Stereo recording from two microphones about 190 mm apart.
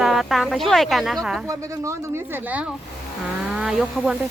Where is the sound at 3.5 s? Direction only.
5° right (ahead or behind).